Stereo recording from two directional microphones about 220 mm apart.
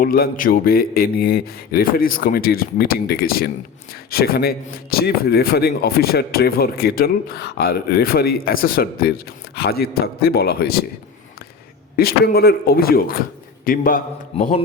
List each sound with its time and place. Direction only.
0.0 s speech: 40° left (ahead or behind)
11.9 s a man's voice: 45° left (ahead or behind)